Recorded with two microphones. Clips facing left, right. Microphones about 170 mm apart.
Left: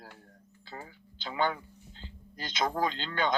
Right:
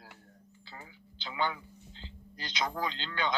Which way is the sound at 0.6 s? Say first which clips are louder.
Left 6 dB; 45° left (ahead or behind).